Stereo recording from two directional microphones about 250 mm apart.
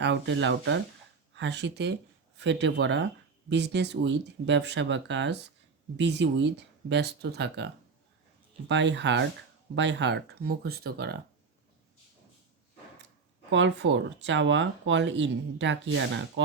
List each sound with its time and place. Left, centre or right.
0.0 s speech: right
13.5 s speech: right